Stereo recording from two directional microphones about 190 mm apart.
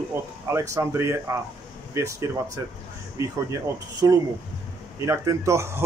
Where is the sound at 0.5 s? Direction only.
15° right (ahead or behind).